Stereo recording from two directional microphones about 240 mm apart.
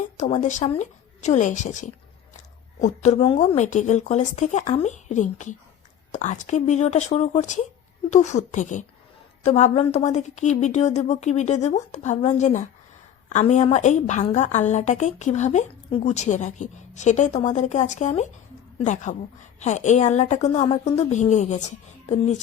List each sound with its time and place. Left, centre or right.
0.0 s a woman's voice: left